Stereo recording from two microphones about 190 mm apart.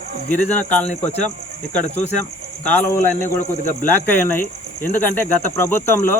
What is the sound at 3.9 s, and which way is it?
Speech, 10° left (ahead or behind).